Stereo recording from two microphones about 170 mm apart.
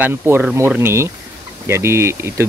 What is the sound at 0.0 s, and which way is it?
Speech, 10° right (ahead or behind).